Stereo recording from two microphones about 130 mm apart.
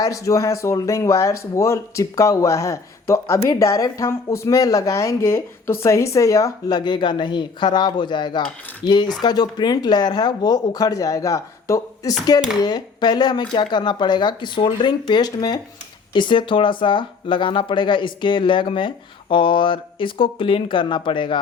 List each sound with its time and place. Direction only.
0.0 s speech: 25° left (ahead or behind)